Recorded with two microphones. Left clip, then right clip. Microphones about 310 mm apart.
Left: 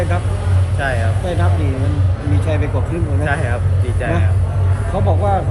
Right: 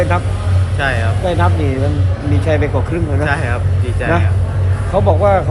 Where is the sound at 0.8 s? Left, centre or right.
Centre.